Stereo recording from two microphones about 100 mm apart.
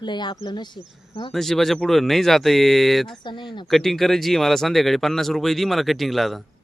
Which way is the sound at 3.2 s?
50° left (ahead or behind).